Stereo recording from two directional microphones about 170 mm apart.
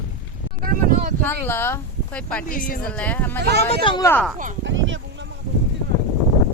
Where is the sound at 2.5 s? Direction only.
55° left (ahead or behind).